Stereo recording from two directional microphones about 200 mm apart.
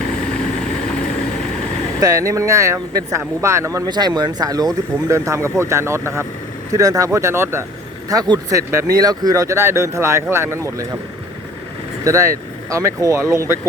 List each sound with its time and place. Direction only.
2.0 s speech: 15° right (ahead or behind)
12.0 s speech: 15° right (ahead or behind)